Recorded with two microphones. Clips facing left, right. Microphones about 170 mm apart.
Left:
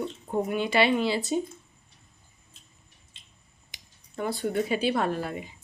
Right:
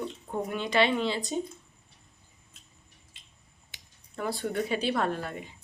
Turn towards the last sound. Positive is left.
turn(degrees=5)  # may be behind; listen again after turning